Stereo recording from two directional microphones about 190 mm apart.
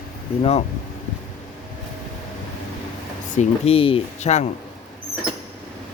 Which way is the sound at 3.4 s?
30° left (ahead or behind).